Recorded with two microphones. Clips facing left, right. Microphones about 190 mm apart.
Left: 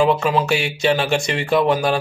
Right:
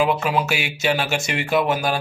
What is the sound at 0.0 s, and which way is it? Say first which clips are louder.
Speech: left 3 dB; 10° right (ahead or behind).